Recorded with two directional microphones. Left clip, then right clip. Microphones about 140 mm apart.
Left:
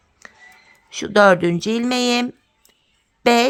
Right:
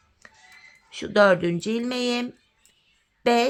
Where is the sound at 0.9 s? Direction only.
40° left (ahead or behind).